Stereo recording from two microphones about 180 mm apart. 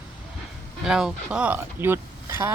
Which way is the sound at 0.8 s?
5° right (ahead or behind).